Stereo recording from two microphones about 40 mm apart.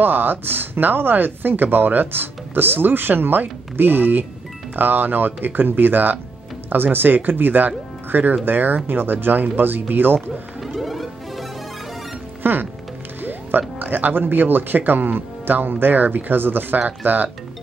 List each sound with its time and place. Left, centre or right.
0.0 s speech: right
10.6 s music: centre
12.4 s speech: right